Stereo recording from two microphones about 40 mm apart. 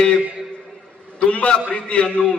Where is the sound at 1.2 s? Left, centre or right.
Left.